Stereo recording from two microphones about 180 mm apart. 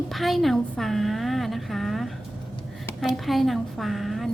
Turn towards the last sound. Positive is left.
turn(degrees=0)  # may be behind; listen again after turning